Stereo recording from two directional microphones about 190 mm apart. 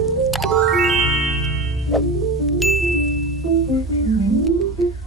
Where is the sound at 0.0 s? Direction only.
Centre (ahead or behind).